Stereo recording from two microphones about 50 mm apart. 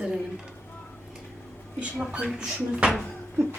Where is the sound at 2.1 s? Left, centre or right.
Right.